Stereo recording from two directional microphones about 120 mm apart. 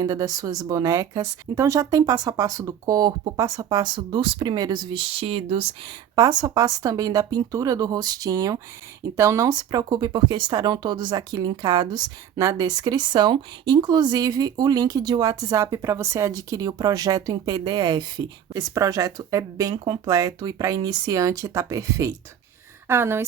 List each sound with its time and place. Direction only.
0.0 s a woman's voice: 30° right (ahead or behind); by 5.6 s 50° right (ahead or behind)
6.1 s a woman's voice: 30° right (ahead or behind)